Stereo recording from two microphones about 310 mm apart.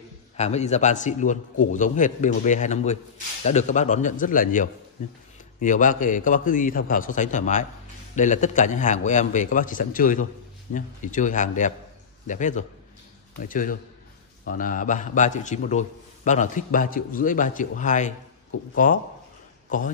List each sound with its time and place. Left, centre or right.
0.4 s a man's voice: left